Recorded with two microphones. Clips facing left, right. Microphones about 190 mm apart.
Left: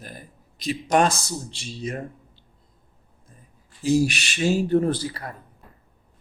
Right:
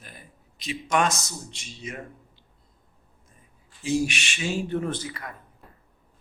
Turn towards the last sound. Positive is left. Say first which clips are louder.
# left 6 dB
turn(degrees=35)  # may be behind; listen again after turning